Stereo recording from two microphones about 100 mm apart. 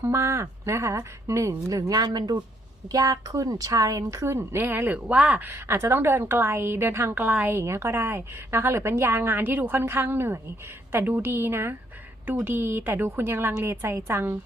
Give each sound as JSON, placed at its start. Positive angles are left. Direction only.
{"t": 0.0, "sound": "a woman's voice", "side_deg": -25}